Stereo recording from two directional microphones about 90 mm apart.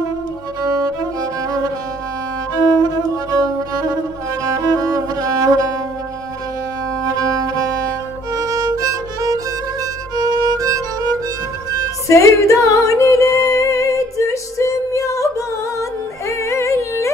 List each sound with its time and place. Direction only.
0.6 s music: 40° right (ahead or behind)
2.8 s music: 45° right (ahead or behind)
7.1 s music: 40° right (ahead or behind)
8.3 s violin: 45° right (ahead or behind)
10.1 s music: 45° right (ahead or behind)
12.1 s music: 35° left (ahead or behind)